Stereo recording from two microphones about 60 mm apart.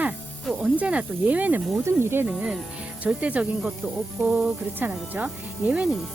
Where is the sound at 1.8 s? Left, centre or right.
Right.